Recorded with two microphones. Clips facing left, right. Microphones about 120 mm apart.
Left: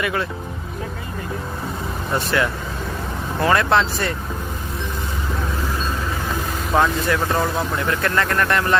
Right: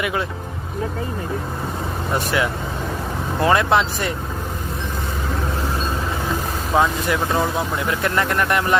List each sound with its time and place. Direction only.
0.0 s speech: 15° right (ahead or behind)
2.1 s speech: 10° right (ahead or behind)
6.7 s speech: 10° right (ahead or behind)